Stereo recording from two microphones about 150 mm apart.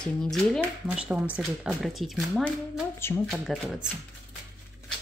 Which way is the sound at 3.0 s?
15° left (ahead or behind).